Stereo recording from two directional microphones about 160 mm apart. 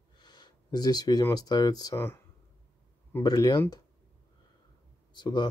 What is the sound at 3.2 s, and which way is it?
Speech, 25° left (ahead or behind).